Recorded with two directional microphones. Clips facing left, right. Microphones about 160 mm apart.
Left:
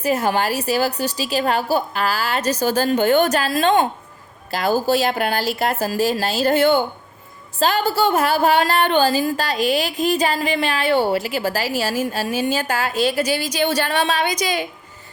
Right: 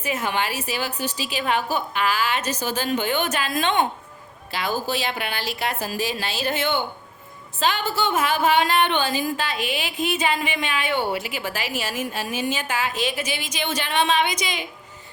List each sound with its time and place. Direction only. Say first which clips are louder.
0.0 s a woman's voice: left 6 dB; 40° left (ahead or behind)